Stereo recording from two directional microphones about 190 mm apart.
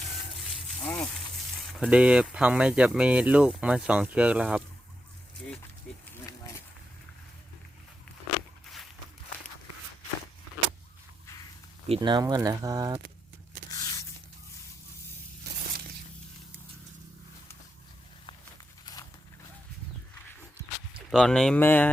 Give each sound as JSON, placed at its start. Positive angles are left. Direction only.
{"t": 1.7, "sound": "speech", "side_deg": -5}
{"t": 11.9, "sound": "speech", "side_deg": -25}
{"t": 13.7, "sound": "a sound", "side_deg": 20}
{"t": 21.1, "sound": "speech", "side_deg": 5}